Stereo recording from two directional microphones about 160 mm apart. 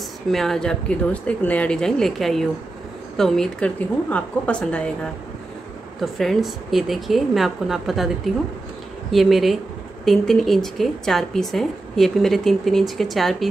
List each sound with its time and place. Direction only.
0.3 s speech: centre (ahead or behind)
9.1 s speech: centre (ahead or behind)